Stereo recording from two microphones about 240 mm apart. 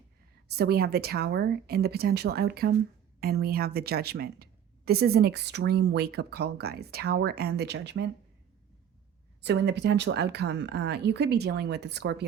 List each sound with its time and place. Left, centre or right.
0.5 s speech: right
9.4 s speech: right